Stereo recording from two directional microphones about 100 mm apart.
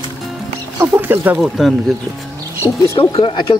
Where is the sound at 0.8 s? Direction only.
20° right (ahead or behind).